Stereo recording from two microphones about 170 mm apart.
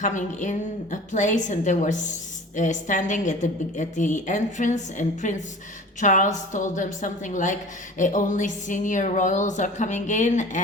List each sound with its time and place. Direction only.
0.0 s a woman's voice: 45° left (ahead or behind)